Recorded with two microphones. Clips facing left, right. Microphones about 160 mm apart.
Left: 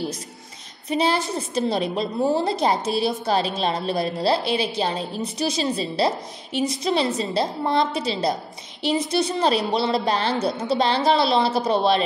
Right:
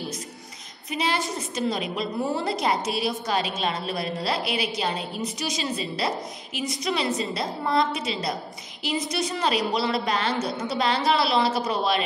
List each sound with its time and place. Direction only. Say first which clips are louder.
0.9 s a woman's voice: left 5 dB; 30° left (ahead or behind)